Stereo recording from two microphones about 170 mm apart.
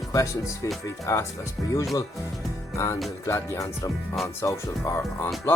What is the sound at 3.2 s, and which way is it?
Speech, 15° left (ahead or behind).